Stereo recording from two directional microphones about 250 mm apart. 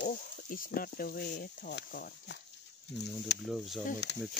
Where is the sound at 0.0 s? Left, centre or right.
Left.